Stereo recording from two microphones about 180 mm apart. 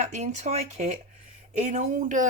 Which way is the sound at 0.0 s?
40° right (ahead or behind).